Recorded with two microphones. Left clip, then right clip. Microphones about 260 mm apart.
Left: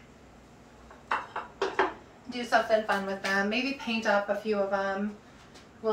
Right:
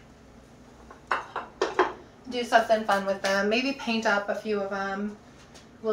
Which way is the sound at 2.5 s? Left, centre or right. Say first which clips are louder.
Right 3 dB; right.